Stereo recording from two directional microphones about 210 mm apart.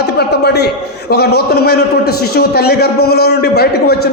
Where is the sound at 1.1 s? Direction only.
50° left (ahead or behind).